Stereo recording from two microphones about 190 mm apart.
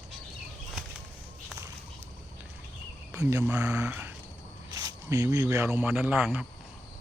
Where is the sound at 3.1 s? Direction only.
15° right (ahead or behind).